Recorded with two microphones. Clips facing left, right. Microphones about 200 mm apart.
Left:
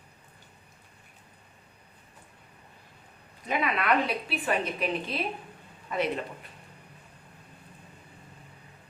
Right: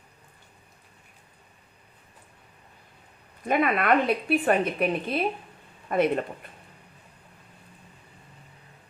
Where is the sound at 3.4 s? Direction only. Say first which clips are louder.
Right 5 dB; 50° right (ahead or behind).